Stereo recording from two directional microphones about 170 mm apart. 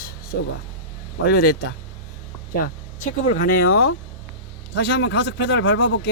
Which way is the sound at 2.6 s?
50° left (ahead or behind).